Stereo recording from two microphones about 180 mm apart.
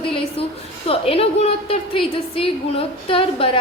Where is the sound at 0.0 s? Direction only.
30° left (ahead or behind).